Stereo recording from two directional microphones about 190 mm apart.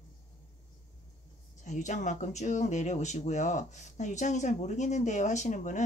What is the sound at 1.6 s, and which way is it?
Speech, 40° left (ahead or behind).